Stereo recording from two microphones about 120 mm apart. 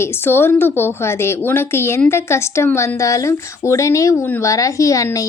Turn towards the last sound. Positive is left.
turn(degrees=25)  # may be behind; listen again after turning